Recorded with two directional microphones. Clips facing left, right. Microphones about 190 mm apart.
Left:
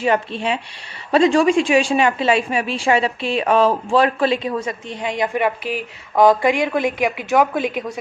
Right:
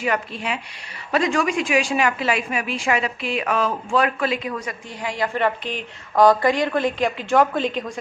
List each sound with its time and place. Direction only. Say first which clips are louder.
0.0 s a woman's voice: left 5 dB; 30° left (ahead or behind); by 7.9 s 10° left (ahead or behind)